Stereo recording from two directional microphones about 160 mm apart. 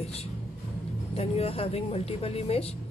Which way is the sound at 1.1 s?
35° left (ahead or behind).